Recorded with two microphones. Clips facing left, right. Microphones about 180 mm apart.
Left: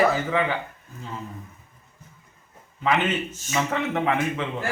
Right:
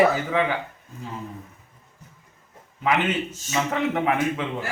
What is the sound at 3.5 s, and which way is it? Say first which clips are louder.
Speech: right 1 dB; 10° right (ahead or behind).